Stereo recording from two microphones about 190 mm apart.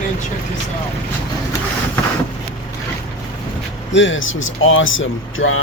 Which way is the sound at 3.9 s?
80° left.